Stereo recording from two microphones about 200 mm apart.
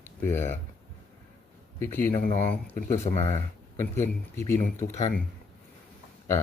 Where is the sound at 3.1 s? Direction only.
35° left (ahead or behind).